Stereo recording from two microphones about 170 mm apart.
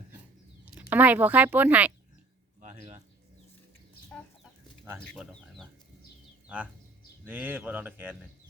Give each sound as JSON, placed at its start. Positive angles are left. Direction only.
{"t": 0.6, "sound": "speech", "side_deg": -10}
{"t": 2.6, "sound": "a sound", "side_deg": -45}
{"t": 4.9, "sound": "speech", "side_deg": 5}
{"t": 7.3, "sound": "speech", "side_deg": -10}